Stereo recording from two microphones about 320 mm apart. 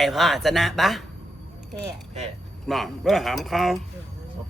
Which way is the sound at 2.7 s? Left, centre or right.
Centre.